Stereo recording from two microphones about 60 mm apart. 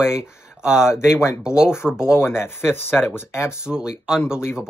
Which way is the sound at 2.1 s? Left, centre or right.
Left.